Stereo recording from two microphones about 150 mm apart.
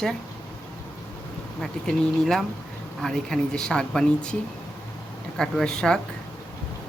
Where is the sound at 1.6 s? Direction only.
5° left (ahead or behind).